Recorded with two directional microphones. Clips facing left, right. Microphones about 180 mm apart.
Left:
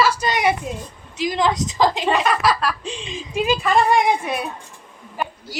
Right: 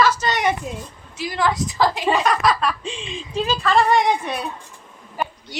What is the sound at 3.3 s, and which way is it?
A woman's voice, 15° left (ahead or behind).